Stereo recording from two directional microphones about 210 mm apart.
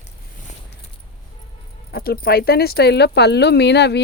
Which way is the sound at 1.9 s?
45° left (ahead or behind).